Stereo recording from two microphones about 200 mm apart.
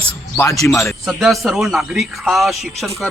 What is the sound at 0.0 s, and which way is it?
Speech, 15° left (ahead or behind).